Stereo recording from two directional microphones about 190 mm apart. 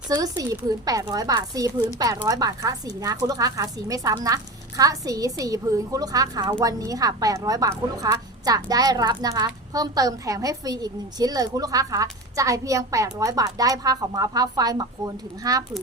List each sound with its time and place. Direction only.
0.1 s a woman's voice: 20° right (ahead or behind)